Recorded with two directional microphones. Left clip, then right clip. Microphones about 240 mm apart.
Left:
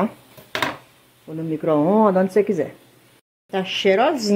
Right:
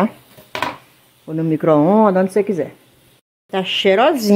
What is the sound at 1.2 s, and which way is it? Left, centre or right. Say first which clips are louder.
Speech: right 7 dB; right.